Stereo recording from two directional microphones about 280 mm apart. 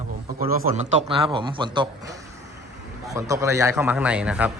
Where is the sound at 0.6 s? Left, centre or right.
Right; by 4.5 s centre.